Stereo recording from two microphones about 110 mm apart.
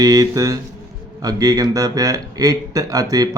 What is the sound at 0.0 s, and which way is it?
Speech, 35° right (ahead or behind).